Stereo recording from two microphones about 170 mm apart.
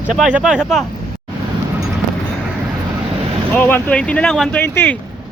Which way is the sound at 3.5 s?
10° left (ahead or behind).